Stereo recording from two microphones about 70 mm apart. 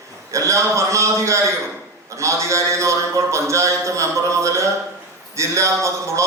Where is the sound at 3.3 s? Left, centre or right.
Right.